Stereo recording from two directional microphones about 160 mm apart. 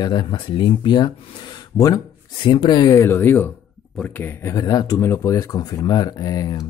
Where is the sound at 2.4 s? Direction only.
25° left (ahead or behind).